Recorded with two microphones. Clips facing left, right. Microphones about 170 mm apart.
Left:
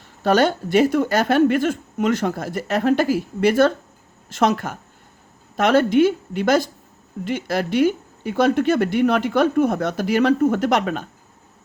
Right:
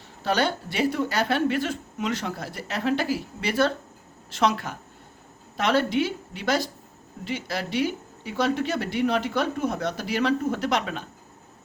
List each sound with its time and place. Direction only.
0.3 s speech: 50° left (ahead or behind)